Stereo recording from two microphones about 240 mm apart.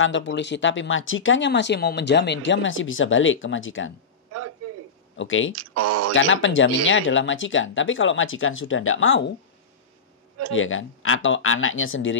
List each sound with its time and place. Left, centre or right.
0.0 s speech: left
5.1 s speech: left
5.6 s speech: right
6.1 s speech: left
10.5 s speech: left